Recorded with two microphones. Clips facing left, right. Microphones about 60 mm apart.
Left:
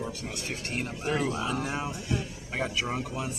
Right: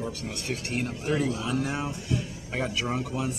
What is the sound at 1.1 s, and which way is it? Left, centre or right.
Speech, left.